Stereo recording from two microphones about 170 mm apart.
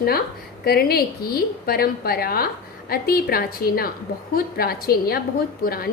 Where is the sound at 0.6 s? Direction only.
65° left (ahead or behind).